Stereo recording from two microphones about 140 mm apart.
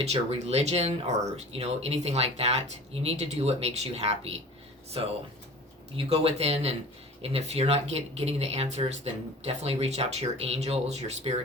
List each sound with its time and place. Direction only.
0.0 s speech: 50° right (ahead or behind)